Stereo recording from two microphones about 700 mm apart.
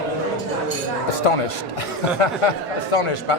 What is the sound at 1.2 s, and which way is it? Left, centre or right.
Speech, left.